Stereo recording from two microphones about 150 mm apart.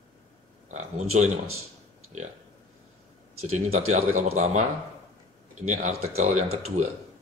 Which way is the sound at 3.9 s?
55° right (ahead or behind).